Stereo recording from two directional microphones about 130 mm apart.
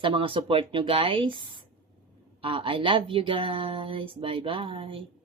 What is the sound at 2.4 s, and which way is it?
Speech, 40° right (ahead or behind).